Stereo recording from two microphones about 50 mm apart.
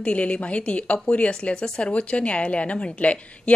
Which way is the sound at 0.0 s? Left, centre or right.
Left.